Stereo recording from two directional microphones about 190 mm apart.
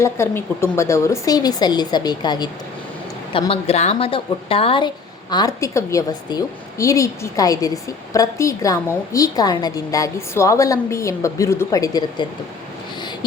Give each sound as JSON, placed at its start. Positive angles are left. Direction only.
{"t": 0.0, "sound": "a woman's voice", "side_deg": 15}